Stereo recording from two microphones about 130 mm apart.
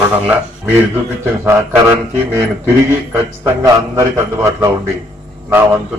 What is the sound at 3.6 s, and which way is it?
A man's voice, 20° right (ahead or behind).